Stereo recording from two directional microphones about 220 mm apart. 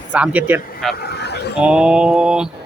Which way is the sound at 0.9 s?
50° left (ahead or behind).